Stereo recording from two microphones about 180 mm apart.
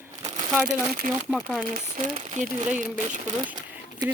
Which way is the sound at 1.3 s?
Centre (ahead or behind).